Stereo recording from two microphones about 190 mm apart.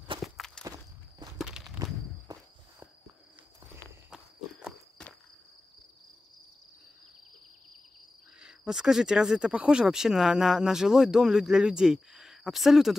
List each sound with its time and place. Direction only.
0.2 s walk: centre (ahead or behind)
2.3 s walk: 20° right (ahead or behind)
3.7 s walk: 5° right (ahead or behind)
8.4 s speech: 5° right (ahead or behind)